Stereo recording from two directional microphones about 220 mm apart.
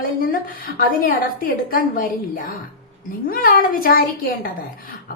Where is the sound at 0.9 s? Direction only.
40° left (ahead or behind).